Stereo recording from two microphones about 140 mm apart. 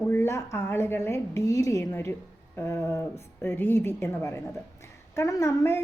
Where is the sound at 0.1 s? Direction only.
20° left (ahead or behind).